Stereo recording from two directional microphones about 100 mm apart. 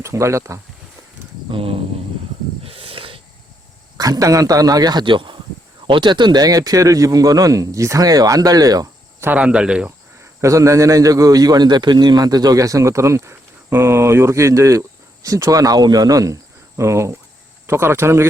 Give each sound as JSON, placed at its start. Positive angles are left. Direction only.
{"t": 0.0, "sound": "speech", "side_deg": -30}
{"t": 1.5, "sound": "cricket", "side_deg": -65}
{"t": 2.6, "sound": "a sound", "side_deg": -65}
{"t": 3.9, "sound": "a man's voice", "side_deg": -40}
{"t": 9.4, "sound": "speech", "side_deg": -10}
{"t": 10.4, "sound": "a man's voice", "side_deg": -30}